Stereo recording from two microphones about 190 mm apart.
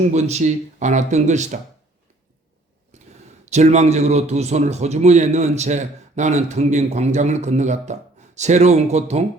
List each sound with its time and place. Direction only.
0.1 s a man's voice: 35° right (ahead or behind)
2.9 s a sound: 35° right (ahead or behind)
3.4 s a man's voice: 35° right (ahead or behind)